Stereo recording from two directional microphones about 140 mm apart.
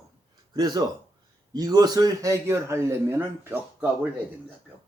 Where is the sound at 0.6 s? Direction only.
30° right (ahead or behind).